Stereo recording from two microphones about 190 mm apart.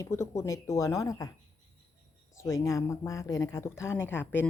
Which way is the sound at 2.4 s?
15° left (ahead or behind).